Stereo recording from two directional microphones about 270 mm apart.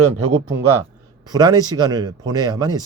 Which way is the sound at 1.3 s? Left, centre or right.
Centre.